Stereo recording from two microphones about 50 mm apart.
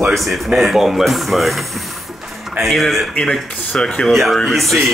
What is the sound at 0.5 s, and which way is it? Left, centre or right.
Speech, centre.